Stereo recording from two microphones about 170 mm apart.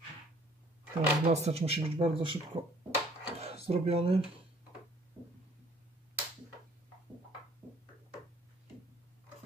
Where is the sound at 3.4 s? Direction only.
35° right (ahead or behind).